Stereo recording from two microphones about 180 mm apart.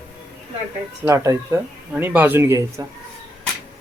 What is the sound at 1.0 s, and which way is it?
Speech, 15° right (ahead or behind).